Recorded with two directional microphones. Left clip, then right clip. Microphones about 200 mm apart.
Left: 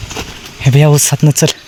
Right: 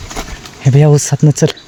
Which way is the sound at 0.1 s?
15° right (ahead or behind).